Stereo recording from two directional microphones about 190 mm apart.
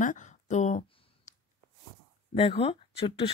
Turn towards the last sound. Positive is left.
turn(degrees=30)  # may be behind; listen again after turning